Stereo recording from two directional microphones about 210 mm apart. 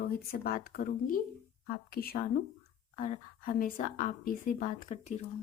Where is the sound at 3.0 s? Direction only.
40° left (ahead or behind).